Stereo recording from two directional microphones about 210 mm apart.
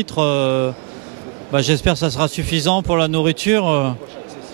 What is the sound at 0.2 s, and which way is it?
Speech, 15° right (ahead or behind).